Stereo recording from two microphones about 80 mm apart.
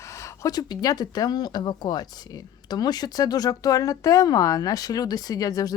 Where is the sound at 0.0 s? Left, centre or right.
Left.